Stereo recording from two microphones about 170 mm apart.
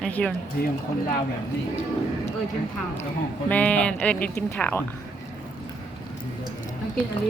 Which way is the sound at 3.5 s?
10° left (ahead or behind).